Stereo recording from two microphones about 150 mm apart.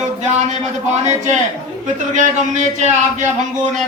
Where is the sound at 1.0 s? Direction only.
50° right (ahead or behind).